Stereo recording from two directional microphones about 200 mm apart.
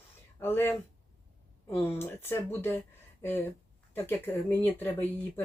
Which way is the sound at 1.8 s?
10° left (ahead or behind).